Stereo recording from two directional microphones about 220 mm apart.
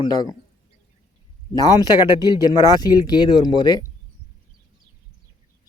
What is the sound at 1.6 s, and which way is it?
Speech, 15° left (ahead or behind).